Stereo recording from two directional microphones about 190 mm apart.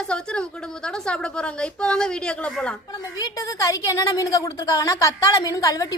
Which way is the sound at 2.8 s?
20° left (ahead or behind).